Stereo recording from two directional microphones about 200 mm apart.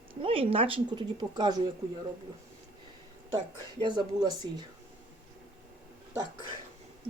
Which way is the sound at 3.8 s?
20° right (ahead or behind).